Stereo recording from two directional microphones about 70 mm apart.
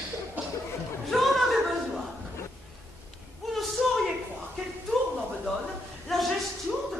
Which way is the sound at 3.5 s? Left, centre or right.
Centre.